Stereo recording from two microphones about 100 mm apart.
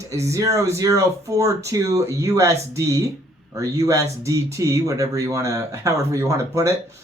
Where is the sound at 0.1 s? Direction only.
35° right (ahead or behind).